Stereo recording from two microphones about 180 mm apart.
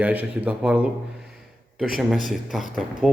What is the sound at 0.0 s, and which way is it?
A man's voice, 10° right (ahead or behind).